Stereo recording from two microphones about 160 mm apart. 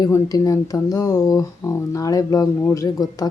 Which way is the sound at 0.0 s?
20° left (ahead or behind).